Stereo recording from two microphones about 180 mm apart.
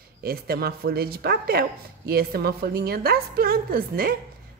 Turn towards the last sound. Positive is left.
turn(degrees=-55)  # may be behind; listen again after turning